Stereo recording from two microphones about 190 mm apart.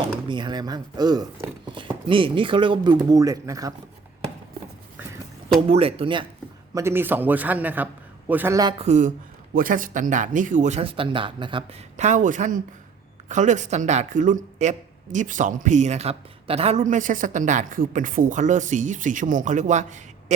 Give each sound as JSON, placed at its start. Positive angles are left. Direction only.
{"t": 0.3, "sound": "speech", "side_deg": -25}
{"t": 5.5, "sound": "speech", "side_deg": -30}
{"t": 6.7, "sound": "a man's voice", "side_deg": -10}
{"t": 8.8, "sound": "speech", "side_deg": -40}
{"t": 11.9, "sound": "speech", "side_deg": -40}